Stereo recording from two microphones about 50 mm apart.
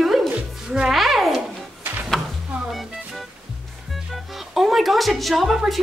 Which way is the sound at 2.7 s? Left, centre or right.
Centre.